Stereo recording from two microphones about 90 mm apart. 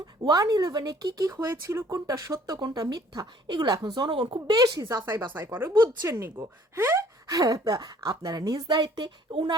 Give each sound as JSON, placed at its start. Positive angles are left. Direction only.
{"t": 0.3, "sound": "speech", "side_deg": -50}
{"t": 4.1, "sound": "speech", "side_deg": -70}
{"t": 4.4, "sound": "speech", "side_deg": -45}
{"t": 7.3, "sound": "speech", "side_deg": -40}
{"t": 8.6, "sound": "speech", "side_deg": -55}